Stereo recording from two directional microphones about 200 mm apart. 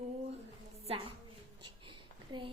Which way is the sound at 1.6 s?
25° right (ahead or behind).